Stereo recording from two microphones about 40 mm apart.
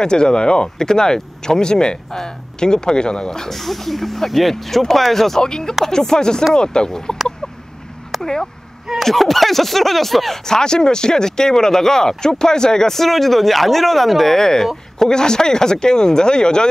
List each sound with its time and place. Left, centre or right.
0.0 s speech: centre
8.2 s speech: centre
8.9 s speech: centre
10.4 s speech: centre